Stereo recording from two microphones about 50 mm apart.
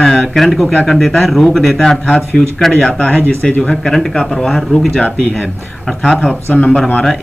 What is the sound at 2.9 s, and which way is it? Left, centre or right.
Speech, left.